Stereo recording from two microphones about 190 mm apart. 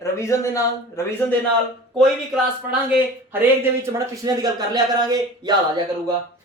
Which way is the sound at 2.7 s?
10° right (ahead or behind).